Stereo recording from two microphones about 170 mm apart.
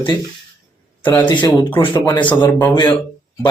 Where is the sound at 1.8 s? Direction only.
25° left (ahead or behind).